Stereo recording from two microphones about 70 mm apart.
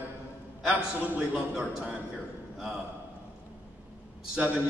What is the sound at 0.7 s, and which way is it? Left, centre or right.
Speech, right.